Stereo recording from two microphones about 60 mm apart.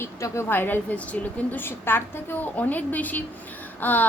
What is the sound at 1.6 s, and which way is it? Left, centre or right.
A woman's voice, left.